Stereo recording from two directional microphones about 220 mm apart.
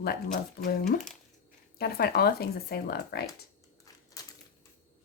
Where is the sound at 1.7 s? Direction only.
45° left (ahead or behind).